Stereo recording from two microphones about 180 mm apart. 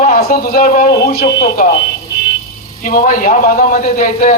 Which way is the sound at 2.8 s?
50° left (ahead or behind).